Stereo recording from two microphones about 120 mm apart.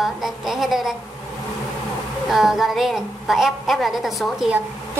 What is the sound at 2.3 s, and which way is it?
A woman's voice, 5° right (ahead or behind).